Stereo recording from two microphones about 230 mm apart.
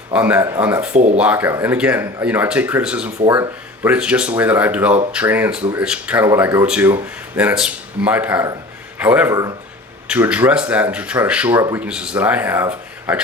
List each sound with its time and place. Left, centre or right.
0.1 s speech: centre
0.9 s speech: right
1.2 s speech: centre